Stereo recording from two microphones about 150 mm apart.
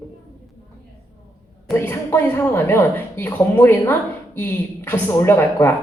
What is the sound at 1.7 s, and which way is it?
Speech, 15° left (ahead or behind).